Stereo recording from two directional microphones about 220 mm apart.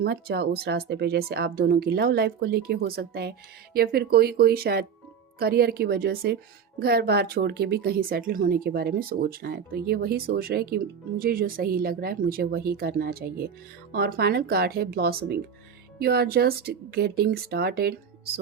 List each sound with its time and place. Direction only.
0.0 s speech: 45° right (ahead or behind)